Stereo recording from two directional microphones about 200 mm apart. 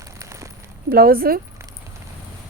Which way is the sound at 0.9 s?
45° right (ahead or behind).